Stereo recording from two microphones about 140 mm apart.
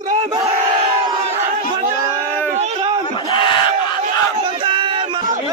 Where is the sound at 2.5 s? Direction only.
55° right (ahead or behind).